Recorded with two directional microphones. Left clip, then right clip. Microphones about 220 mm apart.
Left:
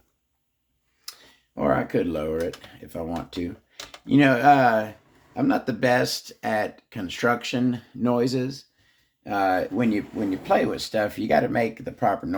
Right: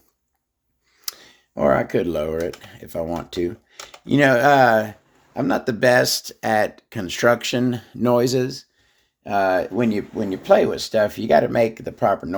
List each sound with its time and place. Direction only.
1.0 s speech: 55° right (ahead or behind)
9.2 s speech: 40° right (ahead or behind)